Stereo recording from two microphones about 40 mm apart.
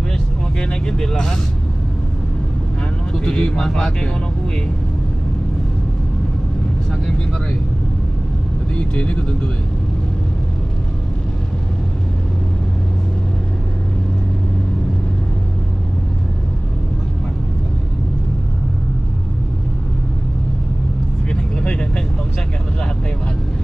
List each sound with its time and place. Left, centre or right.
0.6 s speech: centre
3.3 s speech: centre
8.7 s speech: left
21.3 s vehicle: left